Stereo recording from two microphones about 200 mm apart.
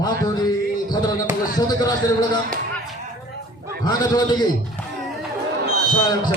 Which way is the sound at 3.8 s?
20° left (ahead or behind).